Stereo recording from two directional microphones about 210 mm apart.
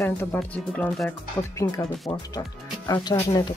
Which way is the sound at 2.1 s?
25° left (ahead or behind).